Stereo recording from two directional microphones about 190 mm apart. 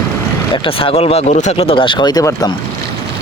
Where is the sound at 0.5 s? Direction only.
30° left (ahead or behind).